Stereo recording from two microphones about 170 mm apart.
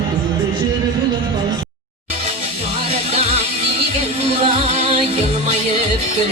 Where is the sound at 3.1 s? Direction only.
40° right (ahead or behind).